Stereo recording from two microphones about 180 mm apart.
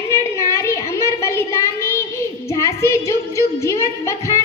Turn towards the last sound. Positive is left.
turn(degrees=15)  # may be behind; listen again after turning